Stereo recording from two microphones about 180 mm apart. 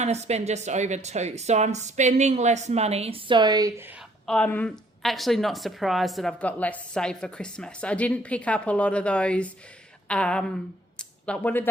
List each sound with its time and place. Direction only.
0.0 s speech: 40° right (ahead or behind); by 4.0 s 10° right (ahead or behind)
4.3 s a woman's voice: 5° left (ahead or behind)
10.9 s a sound: 5° left (ahead or behind)